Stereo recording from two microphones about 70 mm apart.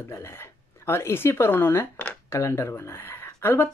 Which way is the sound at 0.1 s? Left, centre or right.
Left.